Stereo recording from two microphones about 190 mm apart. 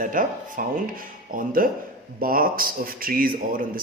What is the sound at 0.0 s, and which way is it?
Speech, 45° right (ahead or behind).